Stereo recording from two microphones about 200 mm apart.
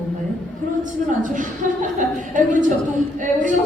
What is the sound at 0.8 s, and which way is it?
A woman's voice, 40° right (ahead or behind).